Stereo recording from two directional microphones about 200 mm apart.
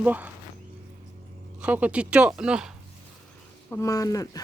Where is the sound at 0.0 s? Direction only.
10° right (ahead or behind).